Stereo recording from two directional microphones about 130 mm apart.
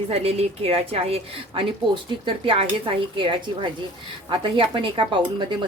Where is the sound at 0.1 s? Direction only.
50° right (ahead or behind).